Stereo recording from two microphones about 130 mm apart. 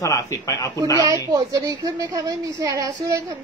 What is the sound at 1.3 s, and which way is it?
A woman's voice, 25° right (ahead or behind).